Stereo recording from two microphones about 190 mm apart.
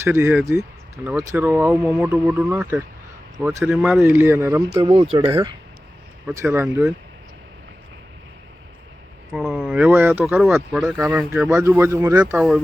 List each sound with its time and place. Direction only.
0.0 s speech: 10° right (ahead or behind)
4.8 s speech: 30° right (ahead or behind)
6.3 s speech: 15° right (ahead or behind)
9.3 s speech: centre (ahead or behind)